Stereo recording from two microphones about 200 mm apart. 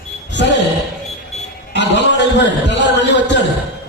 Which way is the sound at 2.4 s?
65° left (ahead or behind).